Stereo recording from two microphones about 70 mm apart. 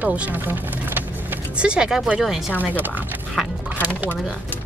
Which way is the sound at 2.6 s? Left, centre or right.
Right.